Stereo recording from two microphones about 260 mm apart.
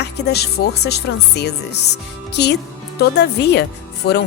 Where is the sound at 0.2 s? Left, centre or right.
Left.